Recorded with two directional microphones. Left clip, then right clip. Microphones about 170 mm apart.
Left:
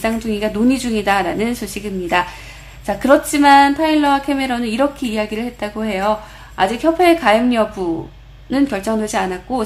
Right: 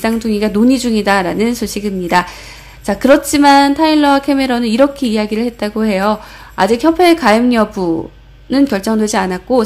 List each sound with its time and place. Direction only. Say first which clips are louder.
0.0 s a woman's voice: right 4 dB; 25° right (ahead or behind)